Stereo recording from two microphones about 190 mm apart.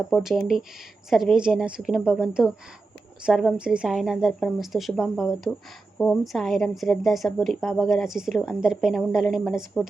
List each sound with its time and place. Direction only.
0.1 s a woman's voice: centre (ahead or behind)